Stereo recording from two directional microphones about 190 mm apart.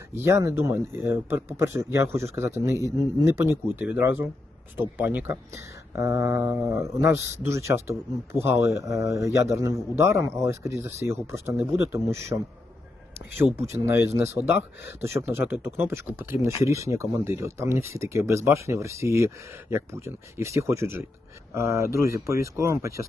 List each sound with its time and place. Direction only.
0.1 s speech: 15° right (ahead or behind)